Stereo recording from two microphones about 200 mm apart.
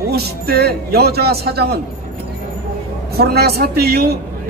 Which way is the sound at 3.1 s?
50° right (ahead or behind).